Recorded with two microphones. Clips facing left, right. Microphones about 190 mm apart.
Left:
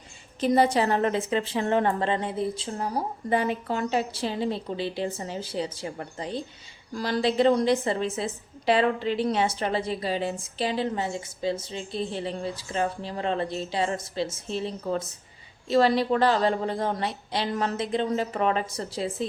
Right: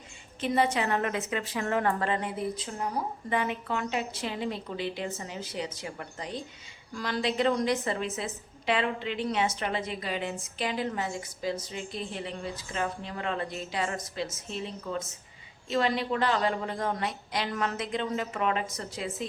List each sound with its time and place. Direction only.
0.3 s a woman's voice: 35° left (ahead or behind)